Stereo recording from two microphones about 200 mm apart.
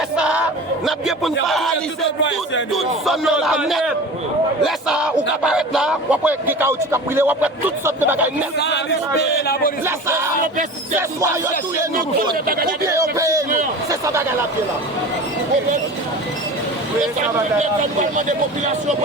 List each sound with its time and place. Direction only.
0.2 s a sound: 5° right (ahead or behind)
0.9 s speech: centre (ahead or behind)
2.7 s speech: centre (ahead or behind)
8.5 s a man's voice: 60° left (ahead or behind)
12.9 s speech: 15° right (ahead or behind)
18.3 s speech: 35° right (ahead or behind)